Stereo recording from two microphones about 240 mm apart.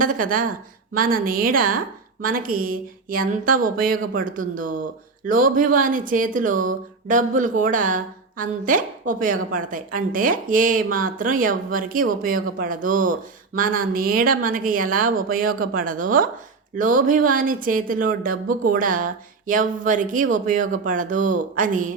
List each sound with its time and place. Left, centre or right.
0.0 s speech: right